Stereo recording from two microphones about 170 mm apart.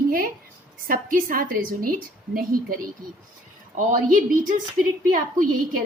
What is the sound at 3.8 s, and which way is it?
Speech, 50° right (ahead or behind).